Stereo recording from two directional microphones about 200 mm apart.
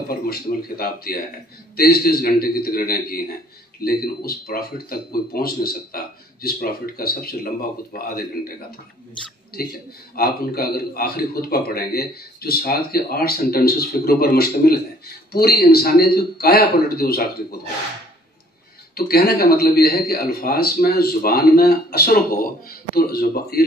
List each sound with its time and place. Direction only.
0.1 s speech: 50° left (ahead or behind)
10.1 s speech: 50° left (ahead or behind)
18.9 s speech: 50° left (ahead or behind)